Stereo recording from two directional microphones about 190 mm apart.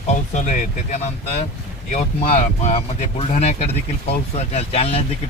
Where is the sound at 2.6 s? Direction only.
35° left (ahead or behind).